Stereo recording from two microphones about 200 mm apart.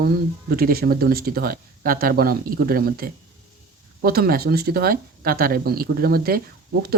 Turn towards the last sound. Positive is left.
turn(degrees=-50)  # may be behind; listen again after turning